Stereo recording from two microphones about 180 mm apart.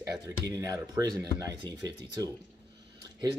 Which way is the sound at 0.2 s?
20° right (ahead or behind).